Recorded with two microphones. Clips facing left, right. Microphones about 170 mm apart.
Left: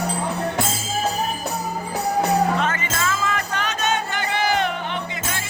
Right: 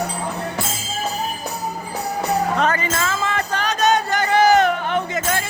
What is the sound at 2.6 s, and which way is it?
Music, 35° right (ahead or behind).